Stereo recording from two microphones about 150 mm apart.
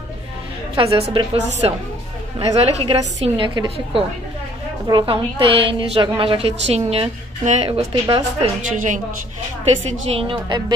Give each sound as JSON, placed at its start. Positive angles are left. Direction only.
{"t": 0.8, "sound": "a woman's voice", "side_deg": -35}
{"t": 1.1, "sound": "a woman's voice", "side_deg": -45}
{"t": 8.7, "sound": "a woman's voice", "side_deg": -60}
{"t": 9.8, "sound": "a woman's voice", "side_deg": -40}